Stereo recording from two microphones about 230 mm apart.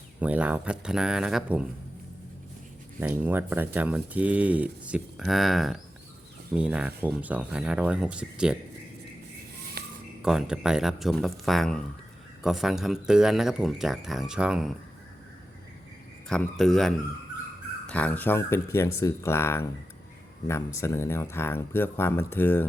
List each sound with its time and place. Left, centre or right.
0.2 s speech: centre
3.0 s speech: centre
9.8 s a sound: right
10.2 s speech: centre
16.3 s speech: centre